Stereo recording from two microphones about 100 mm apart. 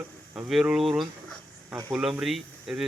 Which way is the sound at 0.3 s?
5° right (ahead or behind).